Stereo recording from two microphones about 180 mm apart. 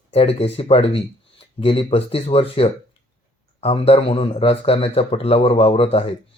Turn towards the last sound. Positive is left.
turn(degrees=35)  # may be behind; listen again after turning